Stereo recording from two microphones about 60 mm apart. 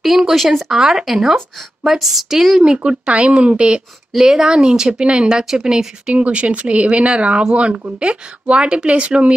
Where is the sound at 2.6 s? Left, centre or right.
Centre.